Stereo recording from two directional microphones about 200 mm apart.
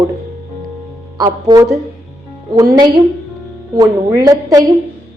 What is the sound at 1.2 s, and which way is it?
A woman's voice, 20° right (ahead or behind).